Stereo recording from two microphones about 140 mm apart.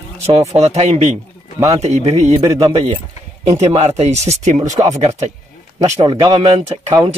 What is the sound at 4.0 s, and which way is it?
Speech, 50° right (ahead or behind).